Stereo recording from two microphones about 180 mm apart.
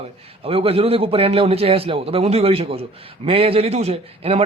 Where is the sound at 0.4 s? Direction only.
30° right (ahead or behind).